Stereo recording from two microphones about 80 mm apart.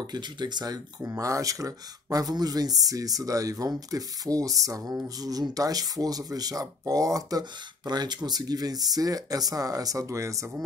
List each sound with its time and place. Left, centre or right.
0.0 s speech: right
1.0 s speech: right